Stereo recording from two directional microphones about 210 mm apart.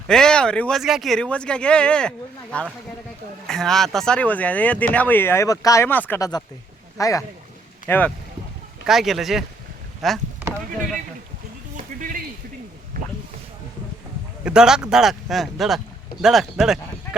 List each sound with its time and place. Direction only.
0.1 s speech: 5° left (ahead or behind)
11.8 s a sound: 40° right (ahead or behind)
14.4 s speech: 5° right (ahead or behind)